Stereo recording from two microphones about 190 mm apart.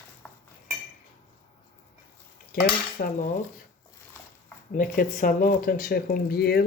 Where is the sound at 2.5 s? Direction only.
50° left (ahead or behind).